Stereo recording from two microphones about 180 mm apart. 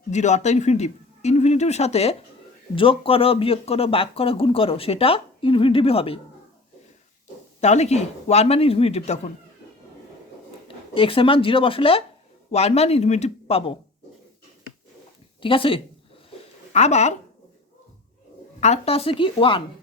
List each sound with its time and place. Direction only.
0.1 s speech: 40° left (ahead or behind)
7.6 s speech: 40° left (ahead or behind)
10.9 s speech: 30° left (ahead or behind)
15.4 s speech: 30° left (ahead or behind)
18.6 s speech: 35° left (ahead or behind)